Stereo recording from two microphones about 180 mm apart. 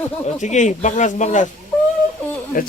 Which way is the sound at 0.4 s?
40° left (ahead or behind).